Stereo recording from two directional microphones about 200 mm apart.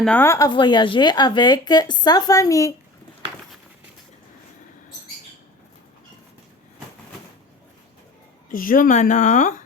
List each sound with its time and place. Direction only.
0.0 s speech: 10° left (ahead or behind)
8.4 s a woman's voice: 45° left (ahead or behind)